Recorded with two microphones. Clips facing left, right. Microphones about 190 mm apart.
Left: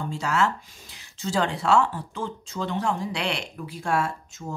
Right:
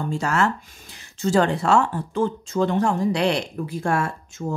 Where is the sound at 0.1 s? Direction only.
50° right (ahead or behind).